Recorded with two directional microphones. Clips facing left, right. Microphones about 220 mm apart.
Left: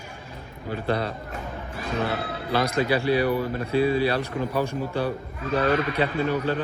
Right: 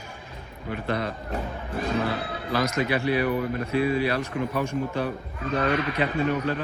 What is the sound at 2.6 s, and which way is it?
A man's voice, 30° left (ahead or behind).